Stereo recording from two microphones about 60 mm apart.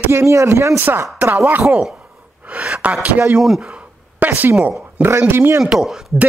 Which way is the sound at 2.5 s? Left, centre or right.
Right.